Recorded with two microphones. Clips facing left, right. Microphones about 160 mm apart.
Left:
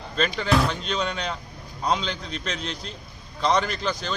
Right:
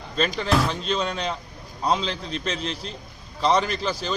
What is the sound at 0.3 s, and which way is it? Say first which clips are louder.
Speech: left 2 dB; centre (ahead or behind).